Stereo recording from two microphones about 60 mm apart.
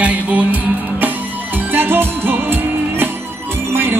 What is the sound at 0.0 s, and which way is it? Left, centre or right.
Music, right.